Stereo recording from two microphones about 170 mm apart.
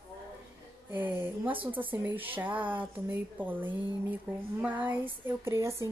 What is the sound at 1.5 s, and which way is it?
Speech, 30° right (ahead or behind).